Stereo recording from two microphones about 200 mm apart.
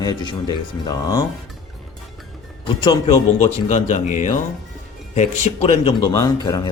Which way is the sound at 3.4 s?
35° left (ahead or behind).